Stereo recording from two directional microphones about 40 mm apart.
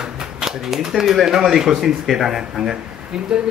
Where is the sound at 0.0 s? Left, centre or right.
Centre.